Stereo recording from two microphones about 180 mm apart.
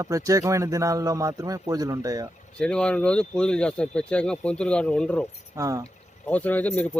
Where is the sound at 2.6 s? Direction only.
5° left (ahead or behind).